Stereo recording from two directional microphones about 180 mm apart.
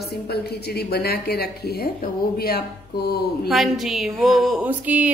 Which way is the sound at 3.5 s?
Centre (ahead or behind).